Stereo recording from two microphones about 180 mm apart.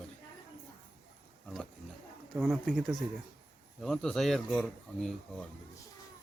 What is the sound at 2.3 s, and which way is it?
A man's voice, 10° right (ahead or behind).